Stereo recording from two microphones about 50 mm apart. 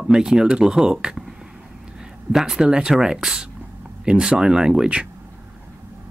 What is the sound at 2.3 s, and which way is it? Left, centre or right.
Speech, centre.